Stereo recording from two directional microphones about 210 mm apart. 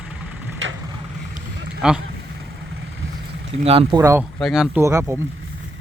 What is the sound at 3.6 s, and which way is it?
Speech, 30° right (ahead or behind).